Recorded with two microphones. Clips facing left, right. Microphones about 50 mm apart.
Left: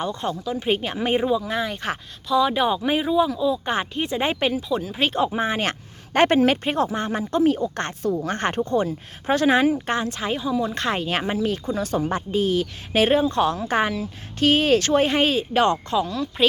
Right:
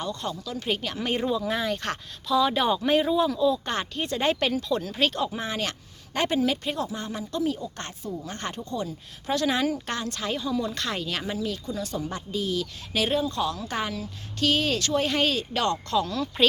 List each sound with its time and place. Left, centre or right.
0.0 s speech: left
1.2 s speech: centre; by 5.7 s left
6.1 s speech: left
16.0 s speech: centre